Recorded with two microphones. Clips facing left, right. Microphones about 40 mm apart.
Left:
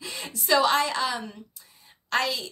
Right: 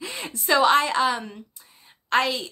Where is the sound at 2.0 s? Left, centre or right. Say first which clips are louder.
Right 4 dB; right.